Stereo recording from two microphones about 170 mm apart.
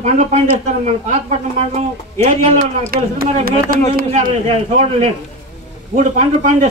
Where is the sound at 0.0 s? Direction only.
40° right (ahead or behind).